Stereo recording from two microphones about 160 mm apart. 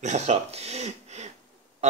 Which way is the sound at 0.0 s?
45° right (ahead or behind).